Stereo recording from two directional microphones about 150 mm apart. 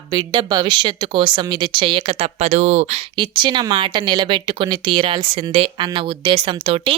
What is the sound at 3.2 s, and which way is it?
Speech, 30° right (ahead or behind).